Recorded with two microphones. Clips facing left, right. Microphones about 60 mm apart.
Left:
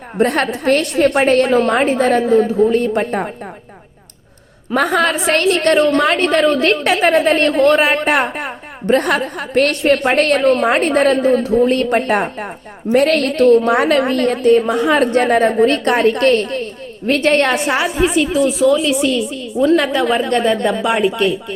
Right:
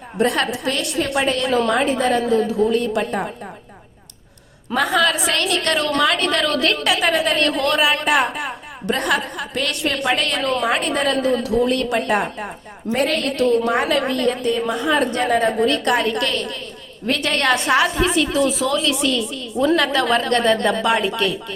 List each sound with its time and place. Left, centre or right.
0.2 s a woman's voice: left
4.7 s a woman's voice: left
12.9 s a woman's voice: left
15.1 s a woman's voice: left; by 18.9 s centre
18.9 s a woman's voice: left